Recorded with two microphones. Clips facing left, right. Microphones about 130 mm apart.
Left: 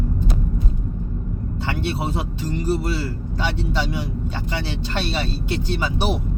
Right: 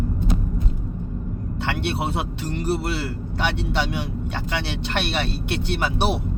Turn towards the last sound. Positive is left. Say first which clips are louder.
# even
turn(degrees=-65)  # may be behind; listen again after turning